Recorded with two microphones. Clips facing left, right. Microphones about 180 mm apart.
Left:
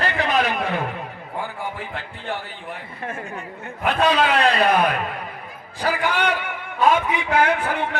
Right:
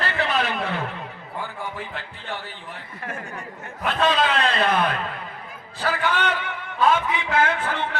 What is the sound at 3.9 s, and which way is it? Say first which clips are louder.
A man's voice: left 3 dB; 15° left (ahead or behind).